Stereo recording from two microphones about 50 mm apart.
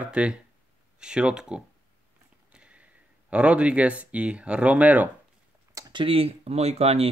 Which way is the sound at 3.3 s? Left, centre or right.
Right.